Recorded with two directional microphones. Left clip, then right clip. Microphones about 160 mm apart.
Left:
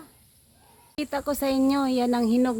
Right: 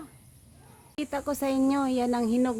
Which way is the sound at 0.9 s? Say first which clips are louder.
Left 3 dB; 30° left (ahead or behind).